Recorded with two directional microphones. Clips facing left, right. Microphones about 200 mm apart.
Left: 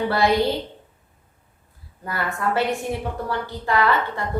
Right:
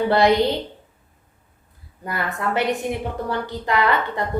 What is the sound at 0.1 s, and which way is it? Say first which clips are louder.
Speech: right 5 dB; 20° right (ahead or behind).